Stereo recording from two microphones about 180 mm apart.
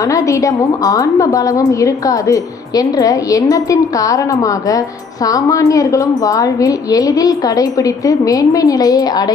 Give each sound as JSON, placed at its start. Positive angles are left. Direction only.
{"t": 0.0, "sound": "a woman's voice", "side_deg": 20}